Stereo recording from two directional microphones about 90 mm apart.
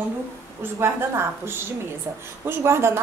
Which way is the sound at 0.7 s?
30° right (ahead or behind).